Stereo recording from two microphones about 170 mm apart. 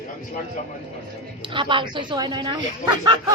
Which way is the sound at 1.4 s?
30° right (ahead or behind).